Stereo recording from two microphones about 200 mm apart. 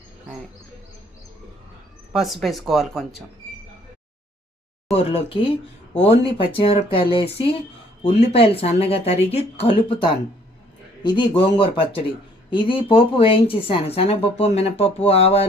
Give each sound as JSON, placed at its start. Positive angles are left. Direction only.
{"t": 2.1, "sound": "speech", "side_deg": 0}
{"t": 4.9, "sound": "a woman's voice", "side_deg": 30}